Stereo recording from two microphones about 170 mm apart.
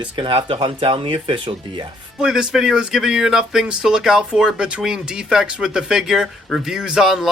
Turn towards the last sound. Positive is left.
turn(degrees=0)  # may be behind; listen again after turning